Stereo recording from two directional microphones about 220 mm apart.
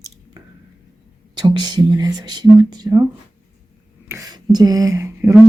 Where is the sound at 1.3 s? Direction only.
20° right (ahead or behind).